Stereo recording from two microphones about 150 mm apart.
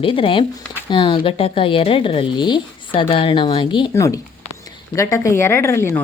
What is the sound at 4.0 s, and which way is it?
A woman's voice, 20° left (ahead or behind).